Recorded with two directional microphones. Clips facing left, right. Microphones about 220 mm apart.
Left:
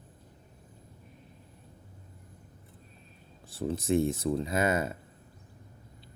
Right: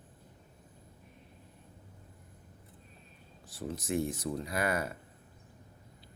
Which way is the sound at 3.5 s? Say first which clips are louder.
Left 7 dB; 25° left (ahead or behind).